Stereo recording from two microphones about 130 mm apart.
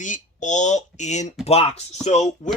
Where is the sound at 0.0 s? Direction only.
75° left (ahead or behind).